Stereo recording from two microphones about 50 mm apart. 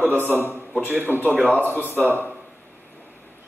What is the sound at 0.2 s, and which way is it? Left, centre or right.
Speech, left.